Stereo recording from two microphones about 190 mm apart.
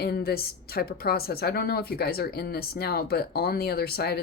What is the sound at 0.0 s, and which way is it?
A woman's voice, 55° left (ahead or behind).